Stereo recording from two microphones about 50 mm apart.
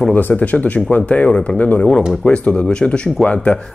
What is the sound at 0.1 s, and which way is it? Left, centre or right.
Speech, left.